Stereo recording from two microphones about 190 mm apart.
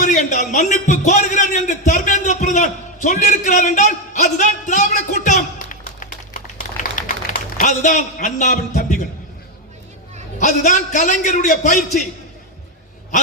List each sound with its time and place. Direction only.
0.0 s a man's voice: 40° left (ahead or behind)
6.9 s a sound: 40° left (ahead or behind)
10.4 s a man's voice: 40° left (ahead or behind)